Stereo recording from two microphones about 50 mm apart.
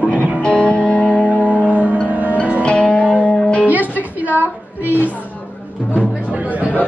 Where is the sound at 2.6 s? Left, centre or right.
Left.